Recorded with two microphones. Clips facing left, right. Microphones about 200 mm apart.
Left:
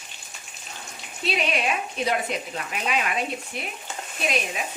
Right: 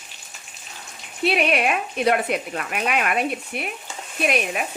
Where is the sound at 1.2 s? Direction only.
60° right (ahead or behind).